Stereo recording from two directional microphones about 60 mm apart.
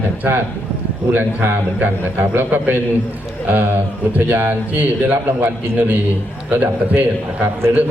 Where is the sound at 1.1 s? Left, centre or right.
Right.